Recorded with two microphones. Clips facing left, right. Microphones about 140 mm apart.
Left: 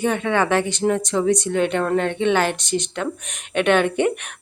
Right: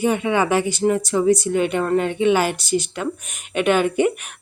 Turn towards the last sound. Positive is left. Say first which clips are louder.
# even
turn(degrees=-5)  # may be behind; listen again after turning